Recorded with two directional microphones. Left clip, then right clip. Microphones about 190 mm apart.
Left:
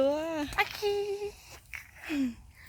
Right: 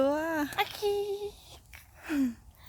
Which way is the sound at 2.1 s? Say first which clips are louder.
Right 2 dB; 10° right (ahead or behind).